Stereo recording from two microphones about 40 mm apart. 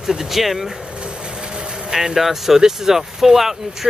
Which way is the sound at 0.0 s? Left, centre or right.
Centre.